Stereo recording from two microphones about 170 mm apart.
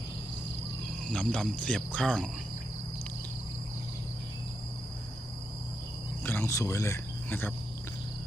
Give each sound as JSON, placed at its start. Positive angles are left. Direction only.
{"t": 1.1, "sound": "speech", "side_deg": 5}
{"t": 6.2, "sound": "speech", "side_deg": 15}